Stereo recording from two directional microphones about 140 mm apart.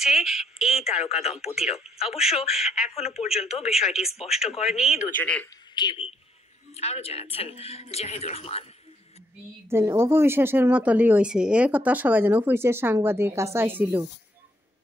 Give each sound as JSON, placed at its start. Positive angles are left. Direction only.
{"t": 0.0, "sound": "speech", "side_deg": -5}
{"t": 0.7, "sound": "speech", "side_deg": 50}
{"t": 2.0, "sound": "speech", "side_deg": -5}
{"t": 2.9, "sound": "speech", "side_deg": 45}
{"t": 3.7, "sound": "speech", "side_deg": -5}
{"t": 5.2, "sound": "speech", "side_deg": 10}
{"t": 5.8, "sound": "speech", "side_deg": 35}
{"t": 6.7, "sound": "speech", "side_deg": 50}
{"t": 9.7, "sound": "speech", "side_deg": -20}